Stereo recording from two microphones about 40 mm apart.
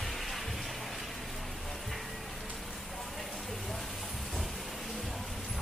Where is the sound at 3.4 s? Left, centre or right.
Centre.